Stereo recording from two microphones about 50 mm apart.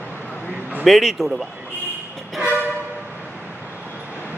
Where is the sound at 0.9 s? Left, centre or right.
Centre.